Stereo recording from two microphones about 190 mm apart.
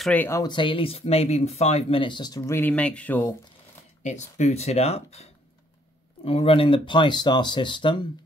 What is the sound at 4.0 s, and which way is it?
Speech, 40° left (ahead or behind).